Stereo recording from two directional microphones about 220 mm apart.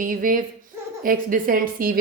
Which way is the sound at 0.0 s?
40° right (ahead or behind).